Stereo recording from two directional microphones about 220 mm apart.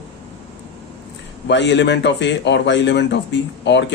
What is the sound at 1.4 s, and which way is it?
Speech, 55° left (ahead or behind).